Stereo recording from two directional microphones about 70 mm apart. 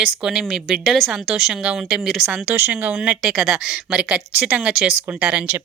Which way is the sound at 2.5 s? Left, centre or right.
Right.